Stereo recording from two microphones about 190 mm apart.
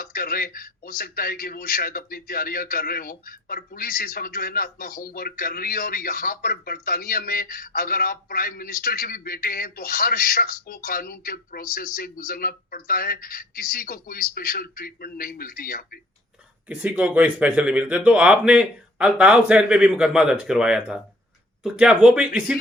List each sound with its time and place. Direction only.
0.0 s speech: 50° left (ahead or behind)
16.6 s speech: 5° right (ahead or behind)